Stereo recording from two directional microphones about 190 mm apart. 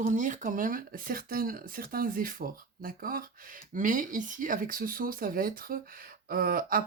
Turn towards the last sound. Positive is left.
turn(degrees=-50)  # may be behind; listen again after turning